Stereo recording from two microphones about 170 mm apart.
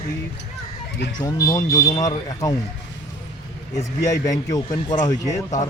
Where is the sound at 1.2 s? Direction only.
20° left (ahead or behind).